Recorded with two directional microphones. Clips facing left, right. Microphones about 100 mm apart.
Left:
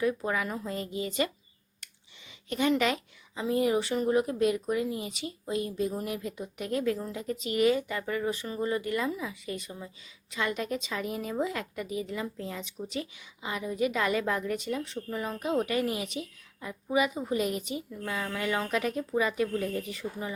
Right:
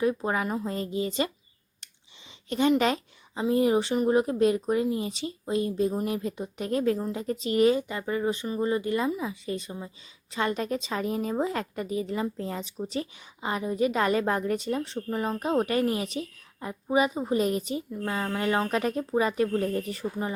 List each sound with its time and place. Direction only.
0.0 s speech: 30° right (ahead or behind)
2.5 s a woman's voice: 30° right (ahead or behind)